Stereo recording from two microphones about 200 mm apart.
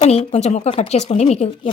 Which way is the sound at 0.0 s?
30° left (ahead or behind).